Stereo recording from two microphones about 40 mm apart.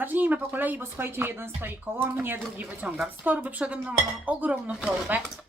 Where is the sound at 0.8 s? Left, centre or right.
Right.